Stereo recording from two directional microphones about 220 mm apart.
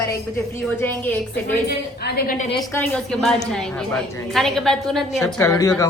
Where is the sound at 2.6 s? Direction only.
5° left (ahead or behind).